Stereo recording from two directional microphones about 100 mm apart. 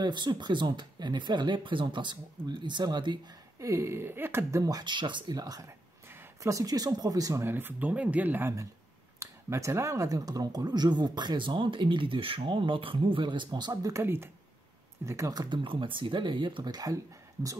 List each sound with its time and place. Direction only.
0.0 s speech: 50° right (ahead or behind)
3.5 s speech: 30° right (ahead or behind)
7.4 s speech: 20° right (ahead or behind); by 13.9 s 45° right (ahead or behind)
13.9 s speech: 25° right (ahead or behind)
15.5 s speech: 60° right (ahead or behind); by 17.6 s 35° right (ahead or behind)